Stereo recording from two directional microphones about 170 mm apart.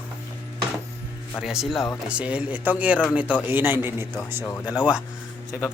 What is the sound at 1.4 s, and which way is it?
Speech, 5° right (ahead or behind).